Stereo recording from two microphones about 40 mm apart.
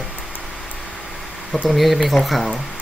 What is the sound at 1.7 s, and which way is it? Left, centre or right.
Speech, centre.